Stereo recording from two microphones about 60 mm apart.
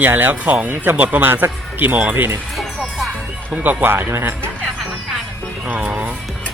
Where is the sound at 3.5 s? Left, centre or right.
Right.